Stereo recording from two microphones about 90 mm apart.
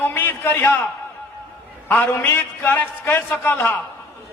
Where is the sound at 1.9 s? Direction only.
20° left (ahead or behind).